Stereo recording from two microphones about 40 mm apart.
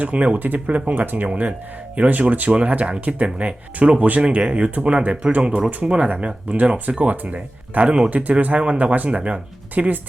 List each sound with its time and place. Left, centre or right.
0.0 s speech: right
1.3 s speech: right
5.4 s speech: right